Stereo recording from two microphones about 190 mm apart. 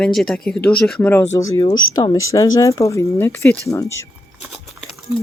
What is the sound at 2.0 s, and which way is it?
Speech, 15° left (ahead or behind).